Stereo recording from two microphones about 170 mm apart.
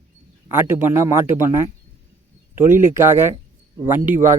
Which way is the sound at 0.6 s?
15° right (ahead or behind).